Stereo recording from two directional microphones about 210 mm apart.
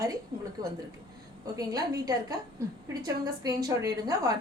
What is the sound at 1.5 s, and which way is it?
A woman's voice, 15° right (ahead or behind).